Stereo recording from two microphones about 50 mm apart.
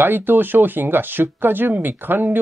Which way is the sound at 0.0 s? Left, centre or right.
Right.